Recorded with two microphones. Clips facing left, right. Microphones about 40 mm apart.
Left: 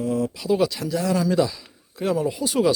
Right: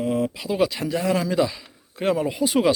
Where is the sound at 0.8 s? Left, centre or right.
Right.